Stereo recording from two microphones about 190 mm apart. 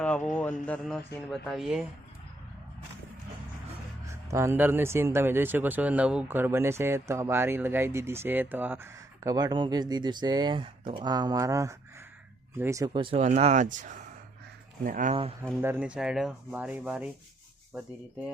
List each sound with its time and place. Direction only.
0.0 s a man's voice: 5° left (ahead or behind)
0.6 s rub: 5° left (ahead or behind)
4.1 s speech: 15° right (ahead or behind); by 15.1 s 45° right (ahead or behind)
15.6 s rub: 5° right (ahead or behind)